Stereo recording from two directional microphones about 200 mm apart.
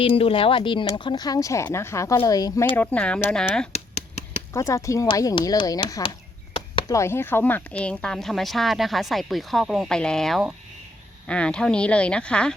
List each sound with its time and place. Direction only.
0.0 s speech: 30° left (ahead or behind); by 3.7 s 5° left (ahead or behind)
3.7 s a sound: 35° left (ahead or behind)
4.5 s speech: 15° left (ahead or behind)